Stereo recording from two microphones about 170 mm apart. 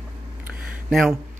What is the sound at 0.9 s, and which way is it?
Speech, centre (ahead or behind).